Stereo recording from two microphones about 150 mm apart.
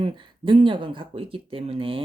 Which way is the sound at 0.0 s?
35° right (ahead or behind).